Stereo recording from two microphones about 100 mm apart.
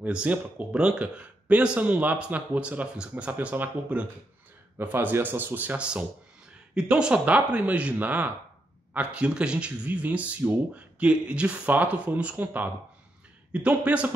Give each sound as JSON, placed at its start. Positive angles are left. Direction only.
{"t": 0.0, "sound": "speech", "side_deg": -15}